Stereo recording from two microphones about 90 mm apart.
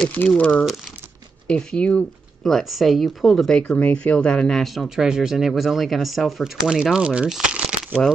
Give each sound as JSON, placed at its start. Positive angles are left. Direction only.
{"t": 0.0, "sound": "speech", "side_deg": 20}
{"t": 2.4, "sound": "speech", "side_deg": 0}
{"t": 4.8, "sound": "speech", "side_deg": -5}